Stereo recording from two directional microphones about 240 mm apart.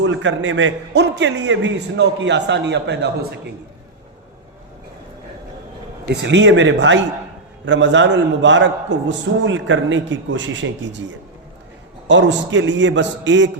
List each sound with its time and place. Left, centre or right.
0.0 s a man's voice: right
6.1 s a man's voice: right